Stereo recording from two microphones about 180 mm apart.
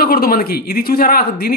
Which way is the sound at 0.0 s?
55° left (ahead or behind).